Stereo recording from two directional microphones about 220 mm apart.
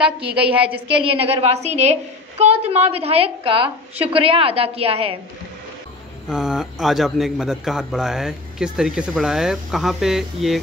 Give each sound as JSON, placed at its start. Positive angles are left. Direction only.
{"t": 0.0, "sound": "a man's voice", "side_deg": -5}
{"t": 0.8, "sound": "a woman's voice", "side_deg": -25}
{"t": 6.2, "sound": "a man's voice", "side_deg": -5}